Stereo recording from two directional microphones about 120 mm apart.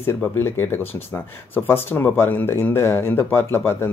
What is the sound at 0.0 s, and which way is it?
Speech, 20° left (ahead or behind).